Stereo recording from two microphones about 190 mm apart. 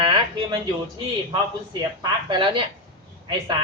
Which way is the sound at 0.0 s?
25° right (ahead or behind).